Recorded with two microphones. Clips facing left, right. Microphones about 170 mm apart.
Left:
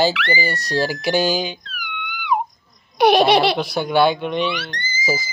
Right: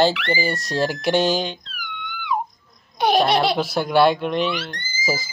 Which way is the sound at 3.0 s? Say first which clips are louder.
Left 4 dB; 75° left (ahead or behind).